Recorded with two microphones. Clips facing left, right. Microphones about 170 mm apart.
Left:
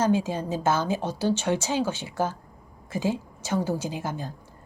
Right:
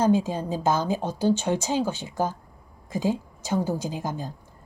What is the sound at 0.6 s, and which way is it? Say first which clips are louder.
A woman's voice: right 1 dB; 15° right (ahead or behind).